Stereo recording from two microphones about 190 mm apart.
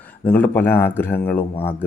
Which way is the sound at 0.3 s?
10° left (ahead or behind).